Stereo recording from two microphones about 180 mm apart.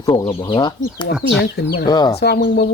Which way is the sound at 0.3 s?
25° left (ahead or behind).